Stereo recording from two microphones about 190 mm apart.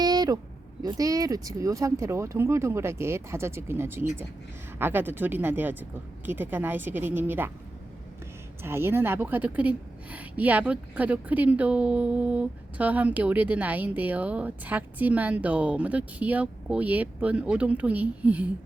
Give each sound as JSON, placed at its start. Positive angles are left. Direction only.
{"t": 0.0, "sound": "a sound", "side_deg": -20}
{"t": 0.8, "sound": "a woman's voice", "side_deg": -20}
{"t": 8.6, "sound": "a woman's voice", "side_deg": -10}